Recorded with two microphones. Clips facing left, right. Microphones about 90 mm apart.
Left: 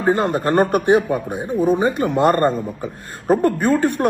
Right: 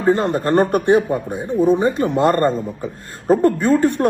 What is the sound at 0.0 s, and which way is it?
Speech, 45° left (ahead or behind).